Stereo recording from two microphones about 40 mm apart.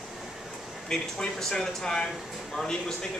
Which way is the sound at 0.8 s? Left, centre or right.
Centre.